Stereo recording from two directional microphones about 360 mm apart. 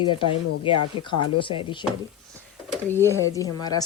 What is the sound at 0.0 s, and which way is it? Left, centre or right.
Speech, centre.